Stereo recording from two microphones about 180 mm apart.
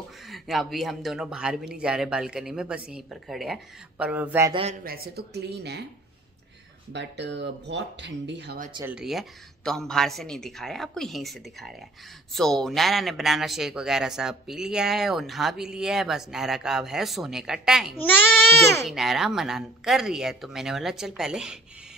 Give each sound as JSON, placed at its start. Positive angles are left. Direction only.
{"t": 0.3, "sound": "speech", "side_deg": 0}
{"t": 4.5, "sound": "a man's voice", "side_deg": -30}
{"t": 4.8, "sound": "speech", "side_deg": -60}
{"t": 6.9, "sound": "speech", "side_deg": -75}
{"t": 8.8, "sound": "speech", "side_deg": -5}